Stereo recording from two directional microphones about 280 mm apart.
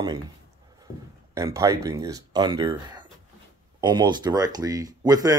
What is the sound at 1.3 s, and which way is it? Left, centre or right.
Speech, centre.